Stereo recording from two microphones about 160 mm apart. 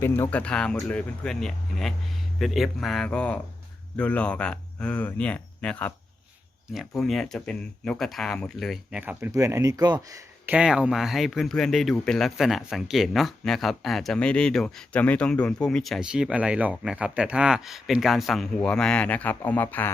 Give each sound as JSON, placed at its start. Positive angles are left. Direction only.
{"t": 0.0, "sound": "speech", "side_deg": 15}
{"t": 10.5, "sound": "speech", "side_deg": -5}